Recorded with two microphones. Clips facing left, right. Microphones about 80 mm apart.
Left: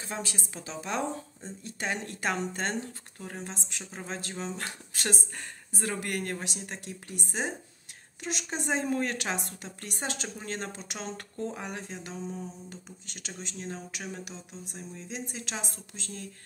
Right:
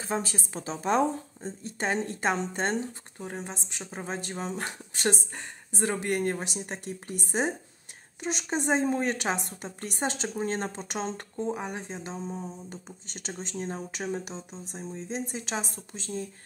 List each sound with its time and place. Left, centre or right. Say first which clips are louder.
0.0 s speech: right 6 dB; right
1.6 s speech: right 5 dB; right
6.4 s speech: right 3 dB; right
11.3 s speech: right 3 dB; centre; by 16.0 s right